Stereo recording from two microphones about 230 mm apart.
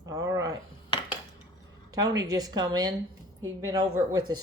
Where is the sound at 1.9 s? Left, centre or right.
Centre.